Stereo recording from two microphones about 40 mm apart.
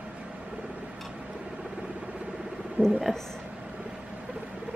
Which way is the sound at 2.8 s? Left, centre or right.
Right.